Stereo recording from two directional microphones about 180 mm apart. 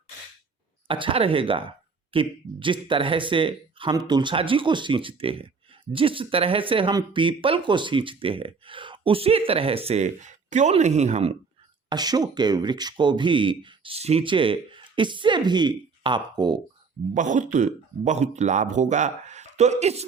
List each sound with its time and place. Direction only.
0.9 s speech: 30° right (ahead or behind)
11.9 s speech: 20° right (ahead or behind)
17.2 s speech: 45° right (ahead or behind)